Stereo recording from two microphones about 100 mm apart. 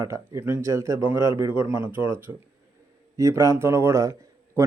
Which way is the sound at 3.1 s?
35° right (ahead or behind).